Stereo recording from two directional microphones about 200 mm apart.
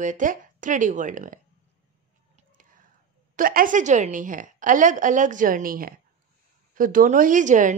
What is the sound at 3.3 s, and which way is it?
Speech, 45° right (ahead or behind).